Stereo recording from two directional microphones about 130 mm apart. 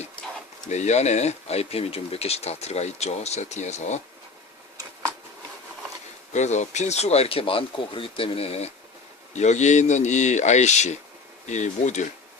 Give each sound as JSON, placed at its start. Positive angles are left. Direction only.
{"t": 0.7, "sound": "speech", "side_deg": 60}
{"t": 6.3, "sound": "speech", "side_deg": 65}
{"t": 9.3, "sound": "speech", "side_deg": 65}